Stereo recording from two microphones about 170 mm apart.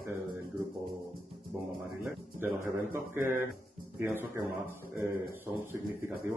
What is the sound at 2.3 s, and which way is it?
A man's voice, 15° right (ahead or behind).